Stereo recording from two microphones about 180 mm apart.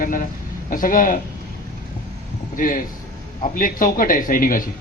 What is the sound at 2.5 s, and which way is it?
A man's voice, 50° left (ahead or behind).